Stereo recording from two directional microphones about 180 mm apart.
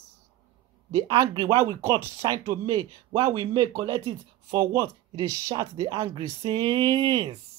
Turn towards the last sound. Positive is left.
turn(degrees=-25)  # may be behind; listen again after turning